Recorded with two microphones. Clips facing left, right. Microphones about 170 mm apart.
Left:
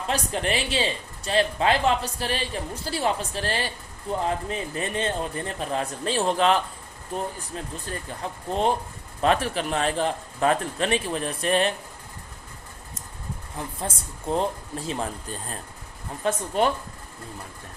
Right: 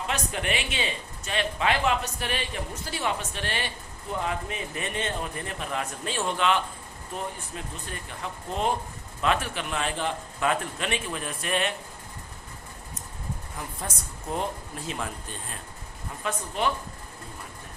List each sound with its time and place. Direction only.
0.1 s speech: 35° left (ahead or behind)
13.8 s speech: 30° left (ahead or behind)